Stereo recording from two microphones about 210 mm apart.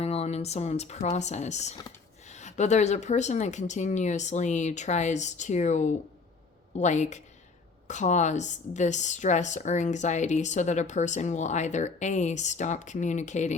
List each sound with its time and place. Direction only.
0.0 s speech: 30° left (ahead or behind)